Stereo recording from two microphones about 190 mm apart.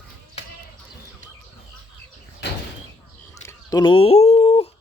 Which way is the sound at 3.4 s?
20° left (ahead or behind).